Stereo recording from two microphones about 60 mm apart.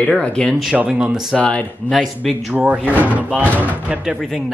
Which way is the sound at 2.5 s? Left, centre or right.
Right.